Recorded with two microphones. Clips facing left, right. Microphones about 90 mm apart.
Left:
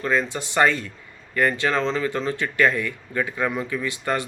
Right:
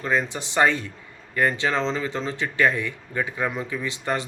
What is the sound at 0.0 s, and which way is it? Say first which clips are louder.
Speech: left 1 dB; 20° right (ahead or behind).